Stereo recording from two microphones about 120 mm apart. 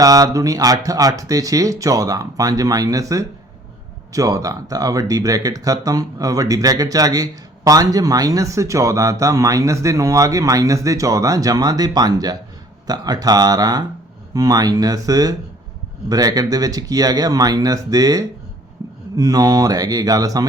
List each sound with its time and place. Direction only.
0.0 s speech: 30° right (ahead or behind)